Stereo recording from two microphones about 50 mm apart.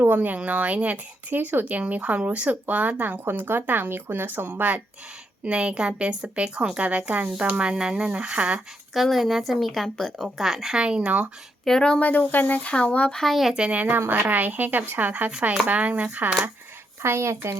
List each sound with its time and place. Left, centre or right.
0.0 s speech: right
3.2 s speech: right
5.5 s speech: right
8.9 s speech: centre
10.8 s speech: right
11.6 s speech: centre
12.0 s speech: left
12.5 s speech: left
13.1 s speech: centre
13.5 s speech: right
14.1 s a woman's voice: right
15.3 s speech: right
17.0 s a woman's voice: right